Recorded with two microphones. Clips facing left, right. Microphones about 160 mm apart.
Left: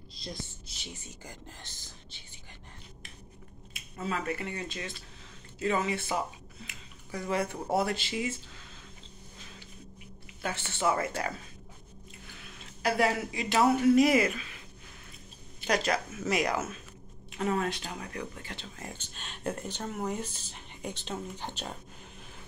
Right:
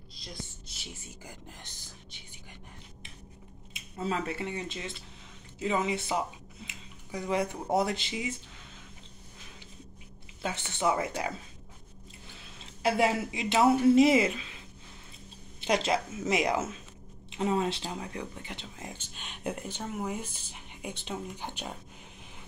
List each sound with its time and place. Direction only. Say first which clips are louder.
1.2 s speech: even; 15° right (ahead or behind)
4.0 s a woman's voice: right 1 dB; 25° right (ahead or behind)
10.4 s speech: even; 20° right (ahead or behind)
12.8 s a woman's voice: right 1 dB; 25° right (ahead or behind)
15.6 s a woman's voice: right 1 dB; 25° right (ahead or behind)